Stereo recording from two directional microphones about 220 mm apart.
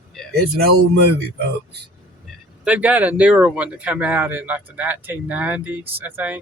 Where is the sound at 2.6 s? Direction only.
5° right (ahead or behind).